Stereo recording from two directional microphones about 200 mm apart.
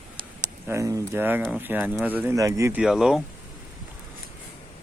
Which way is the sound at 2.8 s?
5° right (ahead or behind).